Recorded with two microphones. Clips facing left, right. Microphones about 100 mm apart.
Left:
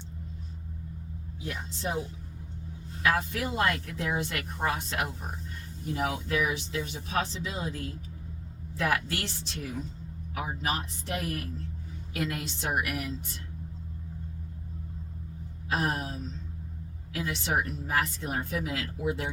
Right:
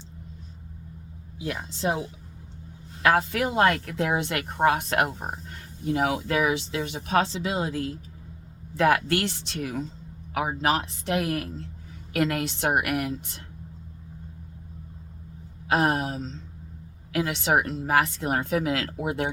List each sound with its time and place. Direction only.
1.4 s speech: 90° right
3.0 s speech: 70° right (ahead or behind)
5.8 s speech: 70° right (ahead or behind)
8.7 s speech: 60° right (ahead or behind)
10.3 s speech: 85° right; by 13.4 s 60° right (ahead or behind)
15.7 s speech: 75° right (ahead or behind)
17.1 s speech: 70° right (ahead or behind)